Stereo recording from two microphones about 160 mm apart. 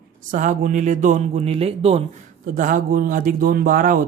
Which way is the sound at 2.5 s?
55° right (ahead or behind).